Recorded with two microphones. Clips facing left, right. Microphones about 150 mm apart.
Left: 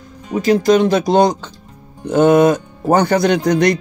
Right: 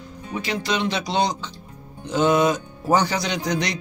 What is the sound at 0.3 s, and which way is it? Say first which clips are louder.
Speech: left 13 dB; 45° left (ahead or behind).